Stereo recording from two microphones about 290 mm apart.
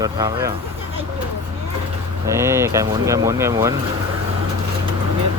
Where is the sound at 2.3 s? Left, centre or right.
Centre.